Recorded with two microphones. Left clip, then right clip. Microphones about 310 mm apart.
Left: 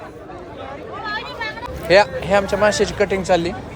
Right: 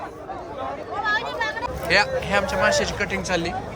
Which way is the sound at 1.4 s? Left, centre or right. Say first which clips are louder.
Right 1 dB; right.